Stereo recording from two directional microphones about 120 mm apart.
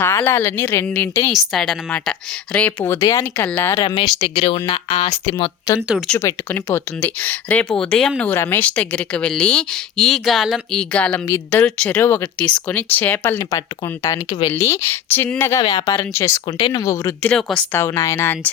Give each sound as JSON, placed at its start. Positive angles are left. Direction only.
{"t": 0.0, "sound": "a woman's voice", "side_deg": 20}
{"t": 3.0, "sound": "speech", "side_deg": 30}
{"t": 3.3, "sound": "a woman's voice", "side_deg": 15}
{"t": 3.8, "sound": "speech", "side_deg": 35}
{"t": 6.1, "sound": "a woman's voice", "side_deg": 20}
{"t": 13.4, "sound": "speech", "side_deg": 25}
{"t": 15.6, "sound": "speech", "side_deg": 35}
{"t": 16.0, "sound": "speech", "side_deg": 20}
{"t": 16.6, "sound": "speech", "side_deg": 45}
{"t": 16.8, "sound": "speech", "side_deg": 25}
{"t": 17.2, "sound": "a woman's voice", "side_deg": 10}